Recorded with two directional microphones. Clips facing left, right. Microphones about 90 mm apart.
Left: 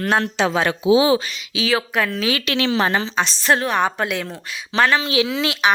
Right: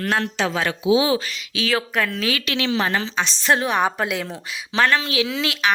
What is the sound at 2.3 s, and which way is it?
Speech, 35° left (ahead or behind).